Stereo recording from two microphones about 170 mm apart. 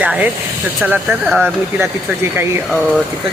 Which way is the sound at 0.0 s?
10° right (ahead or behind).